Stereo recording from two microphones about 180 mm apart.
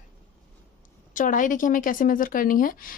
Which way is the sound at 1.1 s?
45° left (ahead or behind).